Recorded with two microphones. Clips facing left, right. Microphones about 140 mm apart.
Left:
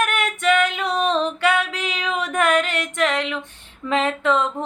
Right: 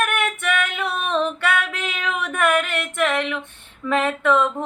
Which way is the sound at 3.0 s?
15° left (ahead or behind).